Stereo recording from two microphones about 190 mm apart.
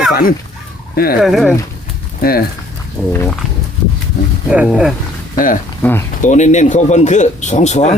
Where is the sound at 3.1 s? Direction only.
10° left (ahead or behind).